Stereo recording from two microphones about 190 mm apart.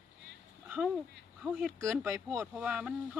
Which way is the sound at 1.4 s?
Centre (ahead or behind).